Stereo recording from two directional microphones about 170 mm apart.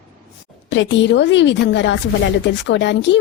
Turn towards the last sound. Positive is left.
turn(degrees=90)